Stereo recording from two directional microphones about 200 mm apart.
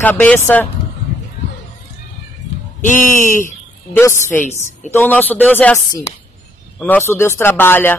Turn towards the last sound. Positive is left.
turn(degrees=10)  # may be behind; listen again after turning